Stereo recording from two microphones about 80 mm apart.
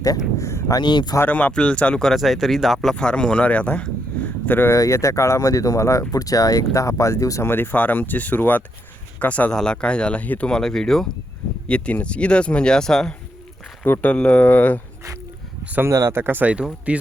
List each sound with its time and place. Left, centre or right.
0.0 s a sound: left
0.8 s speech: left
1.3 s speech: centre
2.9 s speech: centre
4.7 s speech: left
7.4 s speech: left
10.5 s speech: centre
13.8 s speech: left
14.1 s speech: centre
15.6 s speech: right
15.9 s speech: right; by 17.0 s centre